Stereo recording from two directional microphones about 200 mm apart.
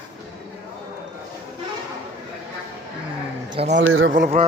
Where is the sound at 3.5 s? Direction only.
30° right (ahead or behind).